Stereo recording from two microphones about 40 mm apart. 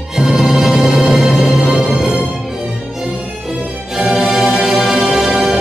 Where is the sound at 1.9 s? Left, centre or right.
Centre.